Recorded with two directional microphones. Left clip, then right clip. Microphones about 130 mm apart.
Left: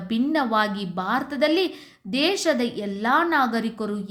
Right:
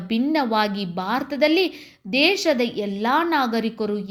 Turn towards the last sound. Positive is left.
turn(degrees=-15)  # may be behind; listen again after turning